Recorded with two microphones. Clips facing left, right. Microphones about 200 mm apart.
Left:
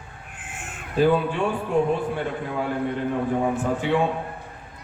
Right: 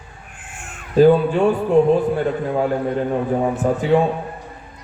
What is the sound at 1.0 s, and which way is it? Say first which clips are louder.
Speech: right 7 dB; 40° right (ahead or behind).